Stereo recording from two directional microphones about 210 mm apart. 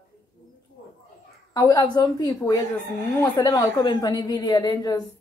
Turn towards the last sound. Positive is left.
turn(degrees=20)  # may be behind; listen again after turning